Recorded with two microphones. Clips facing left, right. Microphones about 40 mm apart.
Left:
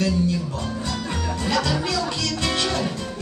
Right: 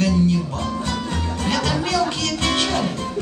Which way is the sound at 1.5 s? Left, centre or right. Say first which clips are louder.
Right 2 dB; right.